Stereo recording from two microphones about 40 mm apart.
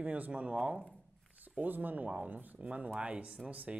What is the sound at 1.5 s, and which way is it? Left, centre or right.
Speech, right.